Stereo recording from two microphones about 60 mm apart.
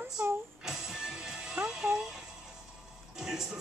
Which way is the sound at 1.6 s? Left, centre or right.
Right.